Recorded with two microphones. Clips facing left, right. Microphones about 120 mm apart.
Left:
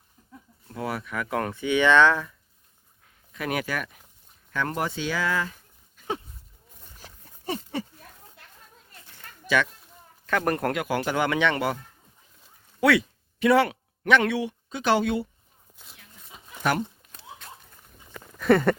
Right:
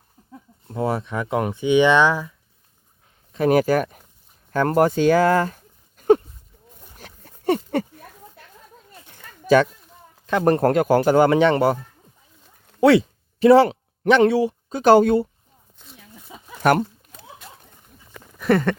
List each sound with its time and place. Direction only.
0.2 s a sound: 35° right (ahead or behind)
0.7 s speech: 30° right (ahead or behind); by 2.3 s 10° right (ahead or behind)
3.3 s speech: 35° right (ahead or behind)
6.0 s goat: 50° right (ahead or behind)
6.9 s dog: 65° right (ahead or behind)
9.5 s speech: 40° right (ahead or behind)
10.2 s speech: 25° right (ahead or behind)
12.8 s speech: 30° right (ahead or behind)
16.6 s speech: 50° right (ahead or behind)
18.3 s a sound: centre (ahead or behind)